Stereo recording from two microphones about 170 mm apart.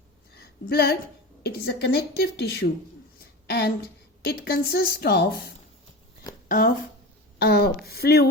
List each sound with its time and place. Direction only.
0.3 s a sound: 70° left (ahead or behind)
1.5 s a woman's voice: 70° left (ahead or behind)
3.2 s a sound: 70° left (ahead or behind)
4.2 s a woman's voice: 65° left (ahead or behind)
6.5 s speech: 55° left (ahead or behind)
7.3 s a woman's voice: 70° left (ahead or behind)